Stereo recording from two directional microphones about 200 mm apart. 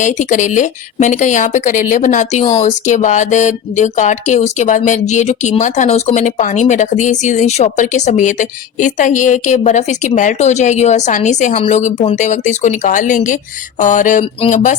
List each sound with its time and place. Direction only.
0.0 s speech: 40° left (ahead or behind)